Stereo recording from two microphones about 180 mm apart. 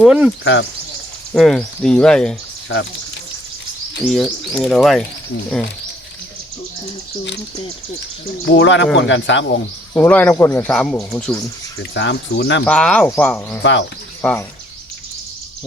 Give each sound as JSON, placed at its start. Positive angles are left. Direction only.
{"t": 0.0, "sound": "speech", "side_deg": -5}
{"t": 1.3, "sound": "speech", "side_deg": 0}
{"t": 2.7, "sound": "speech", "side_deg": 90}
{"t": 4.0, "sound": "speech", "side_deg": 0}
{"t": 8.4, "sound": "speech", "side_deg": 80}
{"t": 9.9, "sound": "speech", "side_deg": 10}
{"t": 11.8, "sound": "speech", "side_deg": 90}
{"t": 12.6, "sound": "speech", "side_deg": 5}
{"t": 13.6, "sound": "speech", "side_deg": 85}
{"t": 14.2, "sound": "speech", "side_deg": 10}